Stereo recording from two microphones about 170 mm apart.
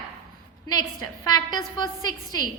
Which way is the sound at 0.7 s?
20° left (ahead or behind).